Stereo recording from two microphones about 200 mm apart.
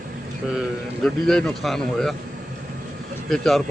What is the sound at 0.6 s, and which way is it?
A man's voice, centre (ahead or behind).